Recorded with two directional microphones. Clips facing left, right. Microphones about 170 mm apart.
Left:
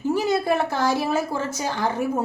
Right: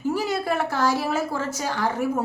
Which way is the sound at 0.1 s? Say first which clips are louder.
Left 4 dB; 20° left (ahead or behind).